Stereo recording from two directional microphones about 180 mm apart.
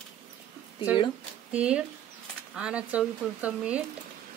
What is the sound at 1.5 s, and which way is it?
Speech, 5° right (ahead or behind).